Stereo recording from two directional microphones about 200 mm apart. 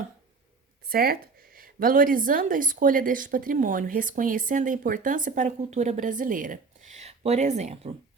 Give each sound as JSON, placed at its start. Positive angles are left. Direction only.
{"t": 0.9, "sound": "a woman's voice", "side_deg": -45}